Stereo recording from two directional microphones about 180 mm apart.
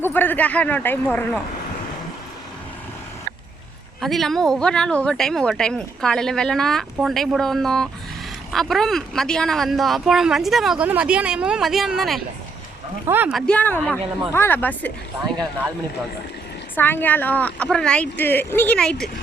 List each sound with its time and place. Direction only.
0.0 s speech: 10° left (ahead or behind)
4.0 s speech: centre (ahead or behind)
13.3 s speech: 5° left (ahead or behind)
16.7 s speech: 10° left (ahead or behind)